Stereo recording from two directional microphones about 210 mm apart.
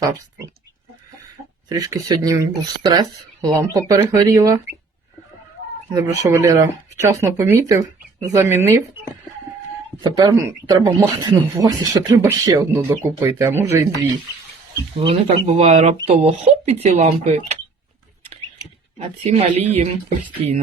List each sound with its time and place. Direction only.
1.7 s speech: 15° right (ahead or behind)
5.9 s speech: 15° right (ahead or behind)
10.0 s speech: 20° right (ahead or behind)
15.0 s speech: 30° right (ahead or behind)
18.9 s speech: 30° right (ahead or behind)